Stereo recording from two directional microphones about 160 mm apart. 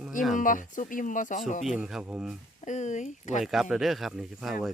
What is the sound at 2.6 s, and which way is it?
Speech, 50° left (ahead or behind).